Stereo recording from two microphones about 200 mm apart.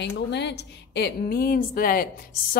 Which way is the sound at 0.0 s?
60° left (ahead or behind).